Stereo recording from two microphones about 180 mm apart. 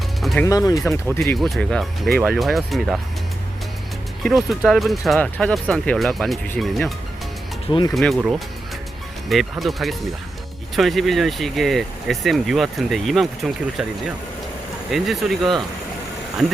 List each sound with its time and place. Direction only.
0.2 s music: centre (ahead or behind)
0.4 s speech: 20° left (ahead or behind)
1.4 s speech: centre (ahead or behind)
4.2 s speech: centre (ahead or behind)
7.9 s speech: centre (ahead or behind)
14.8 s speech: centre (ahead or behind)